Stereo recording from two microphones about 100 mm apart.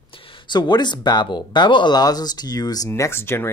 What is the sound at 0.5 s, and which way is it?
Speech, 45° left (ahead or behind).